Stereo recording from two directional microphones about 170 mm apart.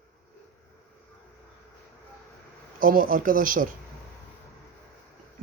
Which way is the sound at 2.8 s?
55° right (ahead or behind).